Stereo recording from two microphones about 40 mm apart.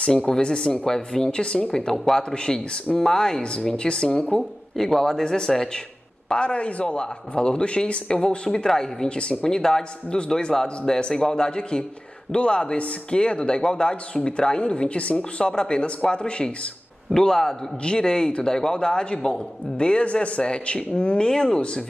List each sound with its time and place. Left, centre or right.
0.3 s speech: left
6.2 s speech: left
9.2 s speech: left
9.5 s speech: centre
17.1 s speech: centre